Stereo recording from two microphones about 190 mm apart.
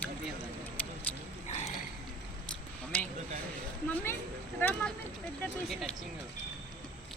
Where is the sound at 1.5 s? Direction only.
35° left (ahead or behind).